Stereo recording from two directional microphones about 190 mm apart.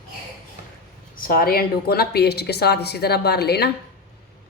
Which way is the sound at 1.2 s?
50° left (ahead or behind).